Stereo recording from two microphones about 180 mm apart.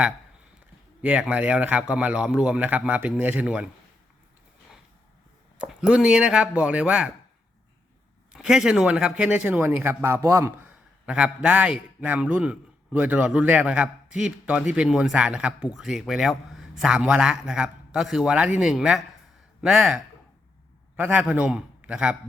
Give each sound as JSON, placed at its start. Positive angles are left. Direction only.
{"t": 1.0, "sound": "a man's voice", "side_deg": -5}
{"t": 5.6, "sound": "speech", "side_deg": -5}
{"t": 8.3, "sound": "a man's voice", "side_deg": -5}